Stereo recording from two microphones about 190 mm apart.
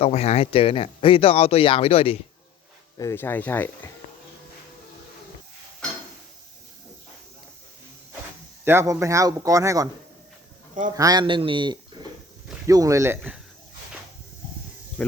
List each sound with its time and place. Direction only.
0.0 s speech: 35° left (ahead or behind)
3.0 s speech: 15° left (ahead or behind)
8.6 s speech: 15° right (ahead or behind)
10.9 s speech: 20° right (ahead or behind)
15.0 s speech: 5° left (ahead or behind)